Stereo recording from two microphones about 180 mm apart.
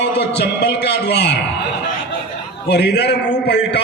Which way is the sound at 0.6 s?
65° left (ahead or behind).